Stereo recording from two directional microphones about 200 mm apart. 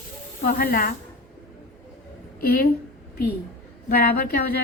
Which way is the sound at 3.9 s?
50° left (ahead or behind).